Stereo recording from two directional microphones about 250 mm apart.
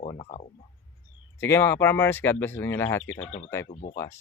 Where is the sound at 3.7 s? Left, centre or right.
Left.